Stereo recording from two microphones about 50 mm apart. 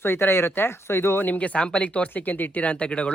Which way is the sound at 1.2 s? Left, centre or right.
Left.